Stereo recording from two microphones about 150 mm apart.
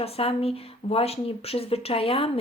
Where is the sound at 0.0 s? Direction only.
40° left (ahead or behind).